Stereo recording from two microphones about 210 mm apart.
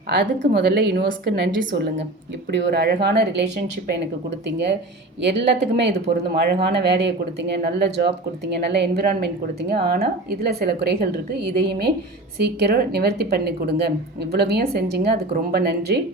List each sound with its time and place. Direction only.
0.1 s speech: 55° right (ahead or behind)